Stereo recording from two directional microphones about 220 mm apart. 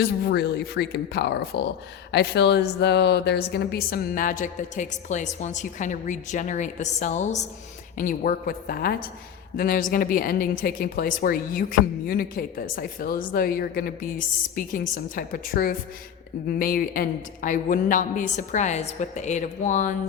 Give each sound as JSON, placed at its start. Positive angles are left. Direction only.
{"t": 0.0, "sound": "speech", "side_deg": 50}